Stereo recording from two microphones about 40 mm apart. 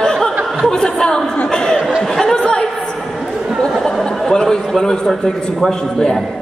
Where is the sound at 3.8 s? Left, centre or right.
Centre.